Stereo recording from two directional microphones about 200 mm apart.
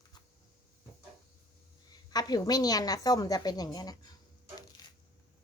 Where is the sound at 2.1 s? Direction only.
20° left (ahead or behind).